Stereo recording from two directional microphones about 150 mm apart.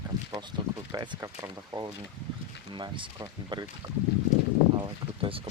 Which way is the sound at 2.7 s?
30° right (ahead or behind).